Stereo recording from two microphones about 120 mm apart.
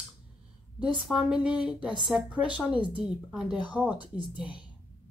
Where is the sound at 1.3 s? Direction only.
10° right (ahead or behind).